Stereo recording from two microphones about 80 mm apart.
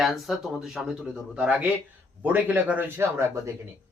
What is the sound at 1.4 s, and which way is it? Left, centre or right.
A man's voice, centre.